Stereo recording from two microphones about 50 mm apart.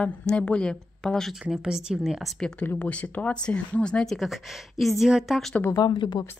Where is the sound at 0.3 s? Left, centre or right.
Left.